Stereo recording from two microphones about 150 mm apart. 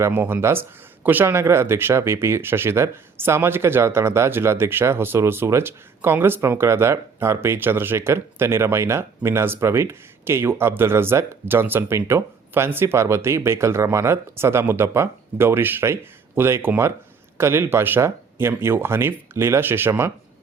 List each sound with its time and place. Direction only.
0.0 s speech: 15° right (ahead or behind)